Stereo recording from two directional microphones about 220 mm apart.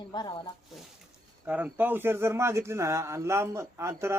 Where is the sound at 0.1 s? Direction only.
20° left (ahead or behind).